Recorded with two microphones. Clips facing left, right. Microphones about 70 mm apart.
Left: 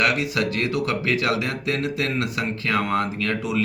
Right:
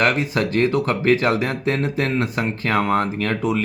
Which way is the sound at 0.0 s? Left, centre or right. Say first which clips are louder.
Right 3 dB; right.